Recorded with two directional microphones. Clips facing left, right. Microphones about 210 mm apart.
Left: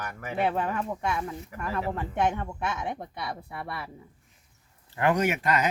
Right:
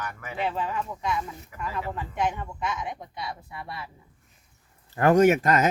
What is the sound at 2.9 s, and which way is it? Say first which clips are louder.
Speech: left 2 dB; 55° left (ahead or behind).